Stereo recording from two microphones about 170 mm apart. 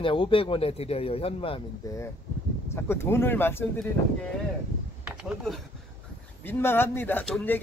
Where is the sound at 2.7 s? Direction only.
15° left (ahead or behind).